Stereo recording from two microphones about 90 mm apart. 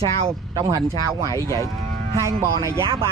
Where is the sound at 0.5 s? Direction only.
50° right (ahead or behind).